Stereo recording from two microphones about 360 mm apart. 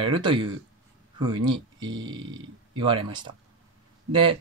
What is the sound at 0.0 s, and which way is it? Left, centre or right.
Speech, centre.